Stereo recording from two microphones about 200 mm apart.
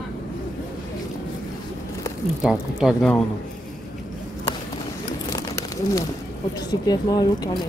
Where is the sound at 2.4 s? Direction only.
Centre (ahead or behind).